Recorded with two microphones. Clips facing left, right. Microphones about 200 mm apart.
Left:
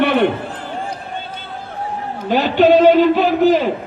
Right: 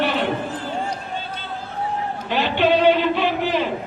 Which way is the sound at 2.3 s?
45° left (ahead or behind).